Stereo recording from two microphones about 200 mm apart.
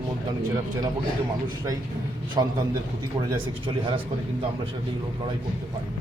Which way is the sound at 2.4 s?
20° right (ahead or behind).